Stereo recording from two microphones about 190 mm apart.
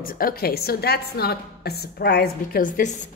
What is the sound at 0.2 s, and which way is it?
A woman's voice, 50° left (ahead or behind).